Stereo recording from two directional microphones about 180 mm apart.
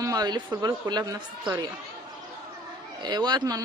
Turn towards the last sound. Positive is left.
turn(degrees=-20)  # may be behind; listen again after turning